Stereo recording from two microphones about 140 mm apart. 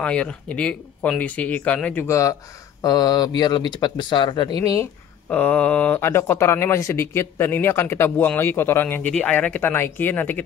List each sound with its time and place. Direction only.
0.0 s speech: 10° left (ahead or behind)
2.0 s speech: 20° left (ahead or behind)
5.3 s speech: 10° left (ahead or behind)